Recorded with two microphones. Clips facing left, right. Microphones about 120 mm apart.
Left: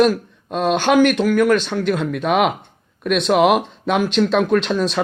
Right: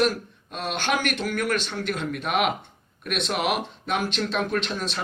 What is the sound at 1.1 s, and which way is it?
Speech, 90° left.